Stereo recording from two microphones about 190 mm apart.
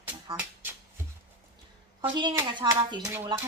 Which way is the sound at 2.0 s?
25° right (ahead or behind).